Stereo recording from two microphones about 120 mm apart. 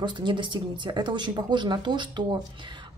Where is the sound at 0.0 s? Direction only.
40° right (ahead or behind).